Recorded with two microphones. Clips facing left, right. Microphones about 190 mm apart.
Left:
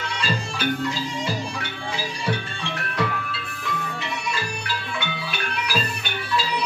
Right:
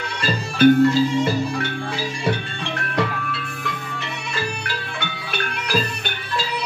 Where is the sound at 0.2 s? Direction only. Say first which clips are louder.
Right 12 dB; 55° right (ahead or behind).